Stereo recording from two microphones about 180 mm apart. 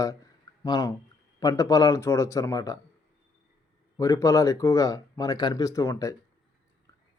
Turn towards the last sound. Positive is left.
turn(degrees=15)  # may be behind; listen again after turning